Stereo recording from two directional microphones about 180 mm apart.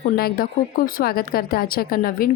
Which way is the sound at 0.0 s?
60° left (ahead or behind).